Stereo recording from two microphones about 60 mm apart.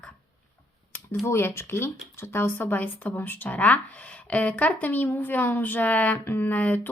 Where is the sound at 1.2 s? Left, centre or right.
Left.